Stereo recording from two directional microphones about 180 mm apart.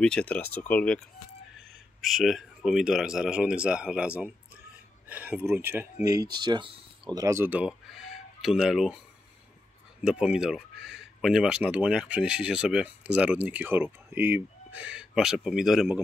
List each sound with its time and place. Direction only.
0.0 s speech: 5° left (ahead or behind); by 5.9 s 15° right (ahead or behind)
6.3 s speech: 25° right (ahead or behind); by 9.0 s centre (ahead or behind)
10.0 s speech: 5° right (ahead or behind)